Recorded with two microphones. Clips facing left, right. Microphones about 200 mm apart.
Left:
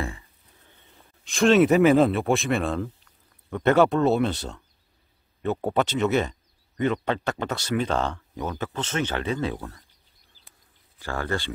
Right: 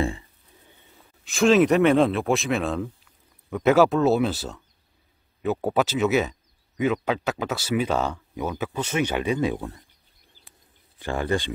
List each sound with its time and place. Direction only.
0.7 s speech: 5° right (ahead or behind)
11.0 s speech: 20° right (ahead or behind)